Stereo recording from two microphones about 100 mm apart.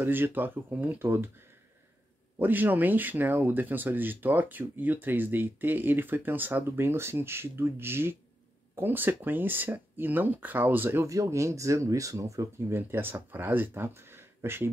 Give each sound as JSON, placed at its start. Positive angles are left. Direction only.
{"t": 0.0, "sound": "speech", "side_deg": -20}
{"t": 2.3, "sound": "speech", "side_deg": -20}
{"t": 11.1, "sound": "speech", "side_deg": -30}